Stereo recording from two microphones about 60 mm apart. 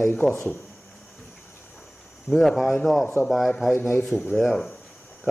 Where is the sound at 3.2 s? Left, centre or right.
Centre.